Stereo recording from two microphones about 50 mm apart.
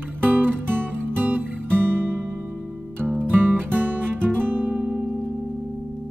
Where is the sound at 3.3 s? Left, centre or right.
Right.